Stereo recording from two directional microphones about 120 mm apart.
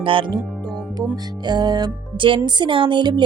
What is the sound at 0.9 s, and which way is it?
Speech, 35° right (ahead or behind).